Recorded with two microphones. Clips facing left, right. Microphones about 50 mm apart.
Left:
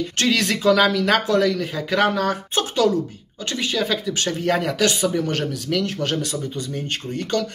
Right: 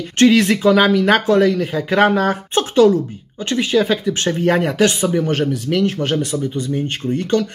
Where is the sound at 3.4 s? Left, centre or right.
Right.